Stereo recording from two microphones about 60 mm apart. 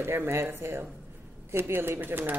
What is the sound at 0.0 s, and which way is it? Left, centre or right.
A woman's voice, right.